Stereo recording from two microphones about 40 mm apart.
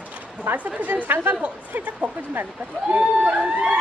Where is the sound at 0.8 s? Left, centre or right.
Right.